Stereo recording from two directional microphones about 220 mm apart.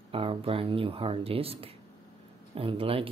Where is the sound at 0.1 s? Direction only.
25° right (ahead or behind).